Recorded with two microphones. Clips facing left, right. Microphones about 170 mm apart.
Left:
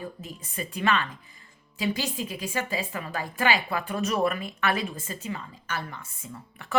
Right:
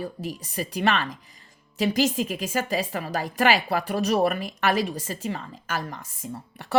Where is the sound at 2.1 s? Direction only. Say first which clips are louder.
Right 5 dB; 90° right.